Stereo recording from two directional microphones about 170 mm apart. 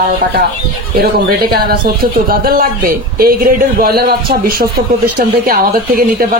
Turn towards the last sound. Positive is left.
turn(degrees=-60)  # may be behind; listen again after turning